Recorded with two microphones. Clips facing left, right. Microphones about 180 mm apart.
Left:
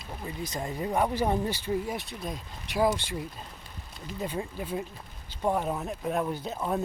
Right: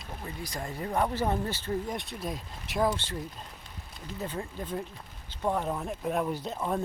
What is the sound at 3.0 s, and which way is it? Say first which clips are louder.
Speech: left 1 dB; 15° left (ahead or behind).